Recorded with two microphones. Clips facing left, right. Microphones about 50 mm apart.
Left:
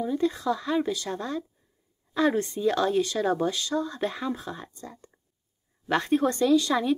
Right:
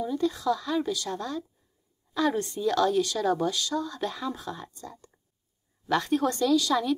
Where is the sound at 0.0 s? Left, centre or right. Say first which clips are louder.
Left 1 dB; left.